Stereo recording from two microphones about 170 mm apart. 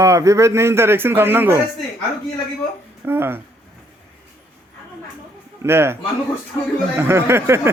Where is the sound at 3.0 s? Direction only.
15° right (ahead or behind).